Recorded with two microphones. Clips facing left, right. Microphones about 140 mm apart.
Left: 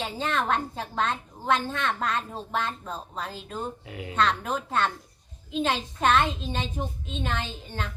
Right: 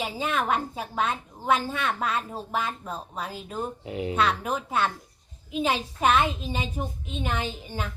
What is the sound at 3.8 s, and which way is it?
Speech, 25° right (ahead or behind).